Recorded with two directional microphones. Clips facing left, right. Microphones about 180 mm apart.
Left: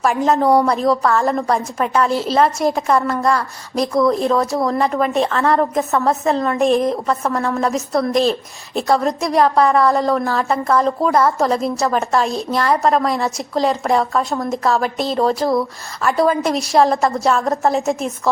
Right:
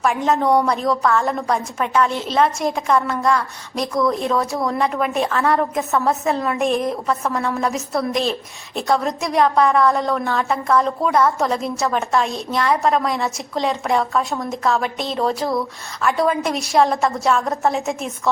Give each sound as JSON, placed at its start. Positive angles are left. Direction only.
{"t": 0.3, "sound": "a woman's voice", "side_deg": 5}
{"t": 2.0, "sound": "a woman's voice", "side_deg": 35}
{"t": 2.3, "sound": "a woman's voice", "side_deg": 0}